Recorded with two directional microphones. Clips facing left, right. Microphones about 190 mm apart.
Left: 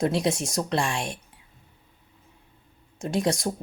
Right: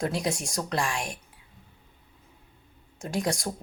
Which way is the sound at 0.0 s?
25° left (ahead or behind).